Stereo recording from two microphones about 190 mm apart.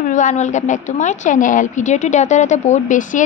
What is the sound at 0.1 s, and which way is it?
A woman's voice, 40° left (ahead or behind).